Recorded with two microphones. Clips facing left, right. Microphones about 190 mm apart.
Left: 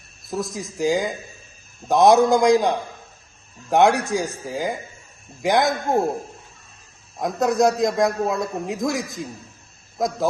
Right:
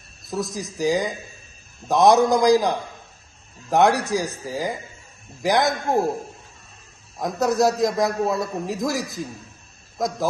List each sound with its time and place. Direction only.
0.3 s a man's voice: centre (ahead or behind)
7.2 s a man's voice: centre (ahead or behind)